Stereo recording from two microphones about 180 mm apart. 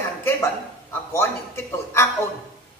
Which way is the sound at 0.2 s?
15° left (ahead or behind).